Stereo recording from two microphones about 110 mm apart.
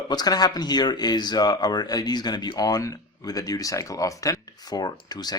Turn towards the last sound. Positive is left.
turn(degrees=40)  # may be behind; listen again after turning